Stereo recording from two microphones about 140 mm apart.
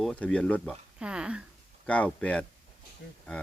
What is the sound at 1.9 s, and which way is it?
Speech, 10° left (ahead or behind).